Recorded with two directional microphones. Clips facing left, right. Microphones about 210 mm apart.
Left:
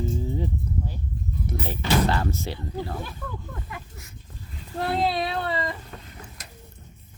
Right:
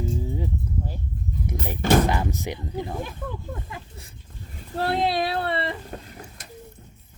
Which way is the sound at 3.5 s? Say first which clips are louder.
Right 2 dB; 30° right (ahead or behind).